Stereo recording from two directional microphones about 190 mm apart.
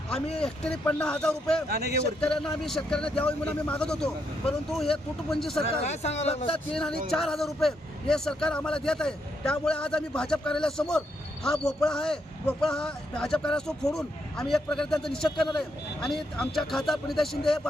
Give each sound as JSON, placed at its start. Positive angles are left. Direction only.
{"t": 0.3, "sound": "a man's voice", "side_deg": 5}
{"t": 5.5, "sound": "speech", "side_deg": 35}
{"t": 7.1, "sound": "a man's voice", "side_deg": 0}